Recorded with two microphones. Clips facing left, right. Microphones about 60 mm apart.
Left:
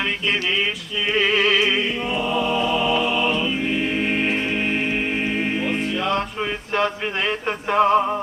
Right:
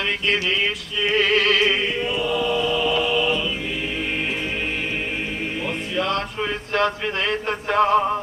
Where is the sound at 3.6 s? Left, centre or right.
Left.